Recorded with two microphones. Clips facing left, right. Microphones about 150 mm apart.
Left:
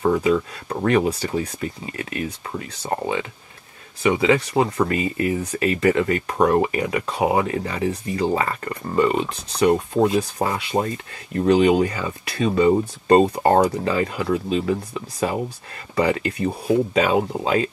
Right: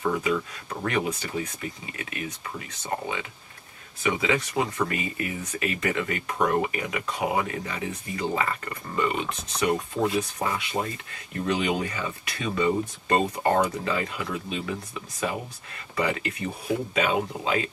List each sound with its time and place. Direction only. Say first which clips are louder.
0.0 s speech: left 7 dB; 35° left (ahead or behind)